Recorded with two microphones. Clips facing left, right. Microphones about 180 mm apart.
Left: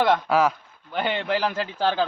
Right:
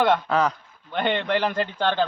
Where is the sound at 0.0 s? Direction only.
5° left (ahead or behind).